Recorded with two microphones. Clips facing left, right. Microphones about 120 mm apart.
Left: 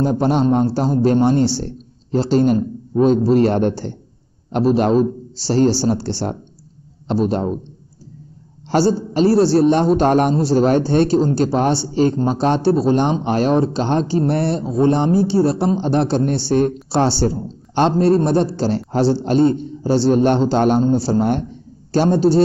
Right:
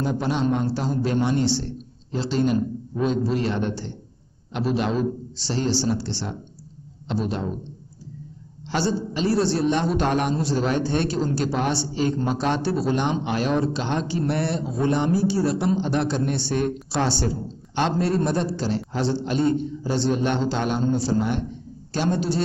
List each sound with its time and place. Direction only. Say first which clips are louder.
0.0 s a man's voice: left 7 dB; 45° left (ahead or behind)
8.6 s a man's voice: left 8 dB; 40° left (ahead or behind)
21.2 s a man's voice: left 6 dB; 45° left (ahead or behind)